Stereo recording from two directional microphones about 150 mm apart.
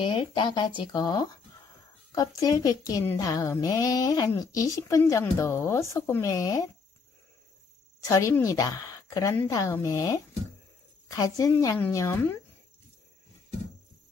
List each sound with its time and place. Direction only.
0.0 s speech: 35° left (ahead or behind)
8.1 s speech: 20° left (ahead or behind)